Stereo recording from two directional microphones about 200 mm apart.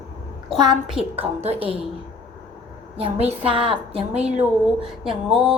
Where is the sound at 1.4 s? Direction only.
30° right (ahead or behind).